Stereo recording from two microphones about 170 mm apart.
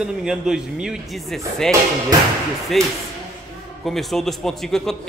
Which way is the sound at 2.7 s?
Centre (ahead or behind).